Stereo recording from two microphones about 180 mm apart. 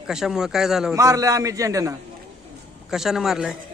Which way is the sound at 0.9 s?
20° right (ahead or behind).